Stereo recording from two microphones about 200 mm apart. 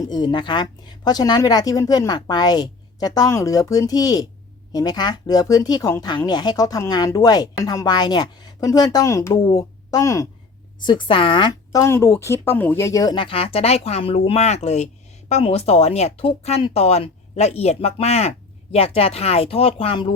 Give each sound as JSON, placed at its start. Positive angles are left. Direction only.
{"t": 0.1, "sound": "speech", "side_deg": 20}